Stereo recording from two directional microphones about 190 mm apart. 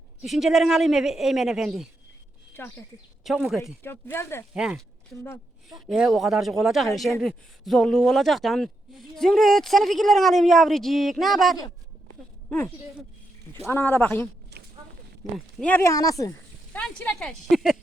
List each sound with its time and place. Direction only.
0.2 s speech: centre (ahead or behind)
2.5 s speech: 10° left (ahead or behind)
3.2 s speech: centre (ahead or behind)
3.8 s speech: 10° left (ahead or behind)
4.5 s speech: 5° right (ahead or behind)
5.1 s speech: 10° left (ahead or behind)
5.6 s speech: centre (ahead or behind)
15.5 s speech: 10° left (ahead or behind)